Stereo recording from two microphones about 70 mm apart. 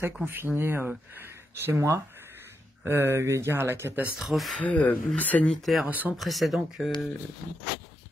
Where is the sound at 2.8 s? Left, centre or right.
Right.